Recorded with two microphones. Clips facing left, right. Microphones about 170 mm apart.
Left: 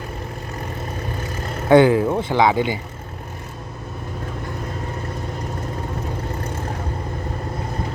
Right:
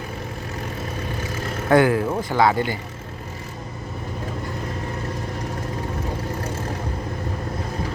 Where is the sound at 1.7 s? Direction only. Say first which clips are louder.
Left 4 dB; 20° left (ahead or behind).